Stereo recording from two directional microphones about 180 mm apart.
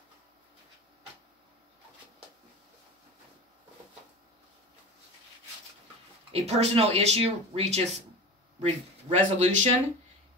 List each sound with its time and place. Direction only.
6.3 s speech: 35° right (ahead or behind)